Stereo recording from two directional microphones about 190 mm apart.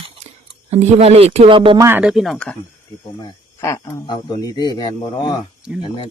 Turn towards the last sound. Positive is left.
turn(degrees=25)  # may be behind; listen again after turning